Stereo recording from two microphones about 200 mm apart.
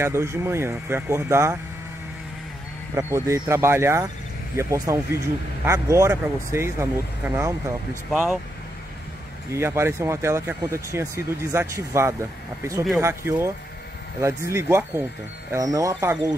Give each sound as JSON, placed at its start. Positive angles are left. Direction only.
{"t": 0.0, "sound": "speech", "side_deg": -15}
{"t": 3.0, "sound": "speech", "side_deg": -15}
{"t": 9.5, "sound": "speech", "side_deg": -15}